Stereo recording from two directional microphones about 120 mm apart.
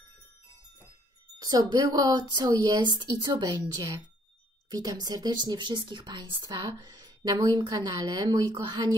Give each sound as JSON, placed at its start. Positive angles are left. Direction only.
{"t": 1.4, "sound": "speech", "side_deg": -35}
{"t": 6.8, "sound": "a sound", "side_deg": -30}
{"t": 7.4, "sound": "speech", "side_deg": -35}